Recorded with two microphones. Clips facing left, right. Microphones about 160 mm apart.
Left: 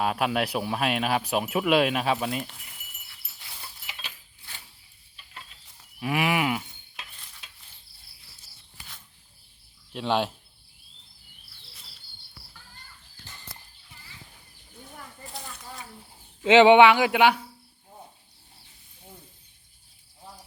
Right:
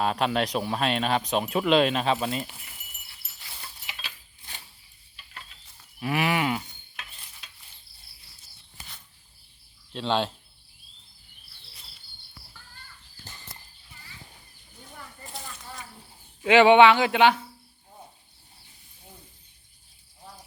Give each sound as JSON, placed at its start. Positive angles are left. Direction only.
{"t": 0.0, "sound": "speech", "side_deg": 5}
{"t": 6.0, "sound": "speech", "side_deg": 15}
{"t": 9.9, "sound": "speech", "side_deg": 10}
{"t": 16.4, "sound": "speech", "side_deg": 20}